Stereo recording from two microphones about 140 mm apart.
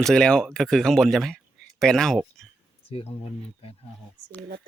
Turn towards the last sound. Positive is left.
turn(degrees=45)  # may be behind; listen again after turning